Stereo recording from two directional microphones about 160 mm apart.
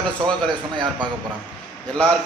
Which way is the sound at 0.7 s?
30° right (ahead or behind).